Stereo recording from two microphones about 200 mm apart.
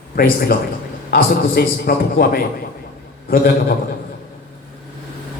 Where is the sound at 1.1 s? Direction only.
50° left (ahead or behind).